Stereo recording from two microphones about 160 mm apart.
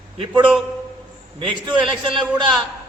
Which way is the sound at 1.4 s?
30° right (ahead or behind).